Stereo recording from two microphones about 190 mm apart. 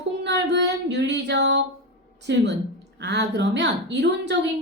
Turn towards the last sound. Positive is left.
turn(degrees=-65)  # may be behind; listen again after turning